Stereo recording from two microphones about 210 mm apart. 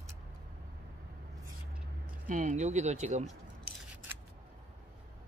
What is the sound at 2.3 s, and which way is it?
Speech, 35° right (ahead or behind).